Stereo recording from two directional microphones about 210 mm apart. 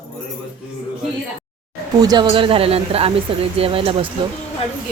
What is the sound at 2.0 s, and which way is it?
Speech, 20° right (ahead or behind).